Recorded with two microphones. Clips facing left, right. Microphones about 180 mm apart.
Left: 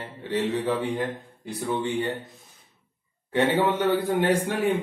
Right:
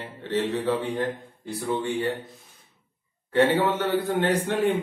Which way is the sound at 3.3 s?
15° left (ahead or behind).